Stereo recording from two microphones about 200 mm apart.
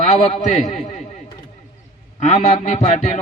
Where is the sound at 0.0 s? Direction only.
35° left (ahead or behind).